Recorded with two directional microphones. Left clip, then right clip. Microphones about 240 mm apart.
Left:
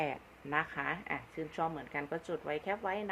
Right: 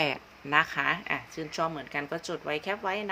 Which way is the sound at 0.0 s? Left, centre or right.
Right.